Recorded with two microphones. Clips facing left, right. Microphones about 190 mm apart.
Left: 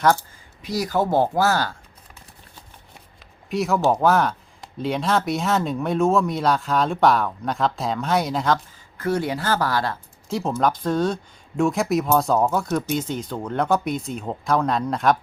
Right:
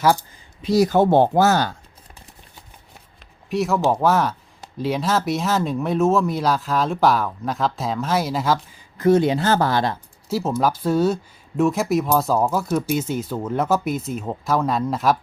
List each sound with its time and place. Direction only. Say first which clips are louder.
0.0 s speech: right 1 dB; 15° right (ahead or behind)
0.6 s speech: right 7 dB; 25° right (ahead or behind)
3.5 s speech: even; centre (ahead or behind)
9.0 s speech: right 7 dB; 20° right (ahead or behind)
10.2 s speech: right 1 dB; 5° right (ahead or behind)